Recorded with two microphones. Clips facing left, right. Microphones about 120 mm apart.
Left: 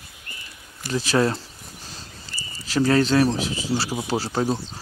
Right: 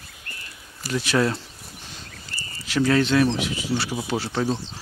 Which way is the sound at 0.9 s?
35° left (ahead or behind).